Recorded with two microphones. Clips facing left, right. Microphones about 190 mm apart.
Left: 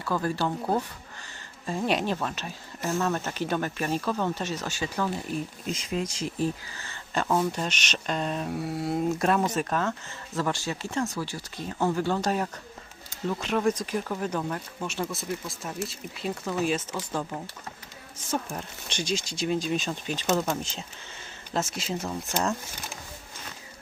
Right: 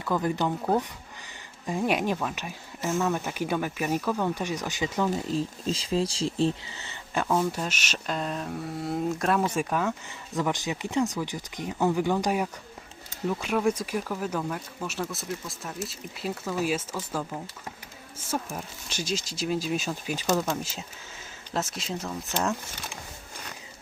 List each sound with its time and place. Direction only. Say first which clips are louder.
0.0 s speech: right 1 dB; 15° right (ahead or behind)
7.3 s speech: even; centre (ahead or behind)